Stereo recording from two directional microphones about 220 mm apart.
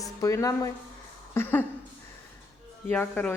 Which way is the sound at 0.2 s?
15° left (ahead or behind).